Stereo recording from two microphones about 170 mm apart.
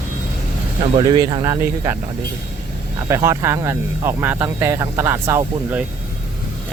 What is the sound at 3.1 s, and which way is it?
Speech, 15° right (ahead or behind).